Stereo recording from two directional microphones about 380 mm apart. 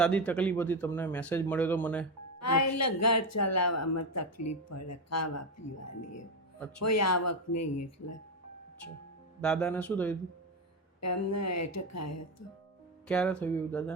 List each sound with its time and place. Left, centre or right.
0.0 s speech: centre
2.4 s speech: left
6.8 s speech: left
9.4 s speech: centre
11.0 s speech: left
13.1 s speech: centre